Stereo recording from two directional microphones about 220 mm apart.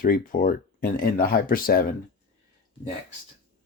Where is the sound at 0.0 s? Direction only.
40° left (ahead or behind).